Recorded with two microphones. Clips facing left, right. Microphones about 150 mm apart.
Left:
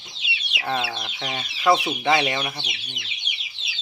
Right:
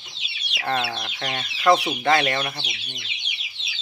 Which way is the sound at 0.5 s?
5° left (ahead or behind).